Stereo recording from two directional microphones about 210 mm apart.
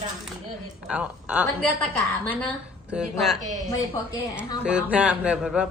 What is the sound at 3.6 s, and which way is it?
Speech, 15° left (ahead or behind).